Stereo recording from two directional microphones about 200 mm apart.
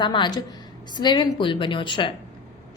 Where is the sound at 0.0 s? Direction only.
25° left (ahead or behind).